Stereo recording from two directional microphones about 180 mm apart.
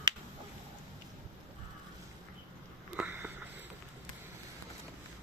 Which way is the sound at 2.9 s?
10° right (ahead or behind).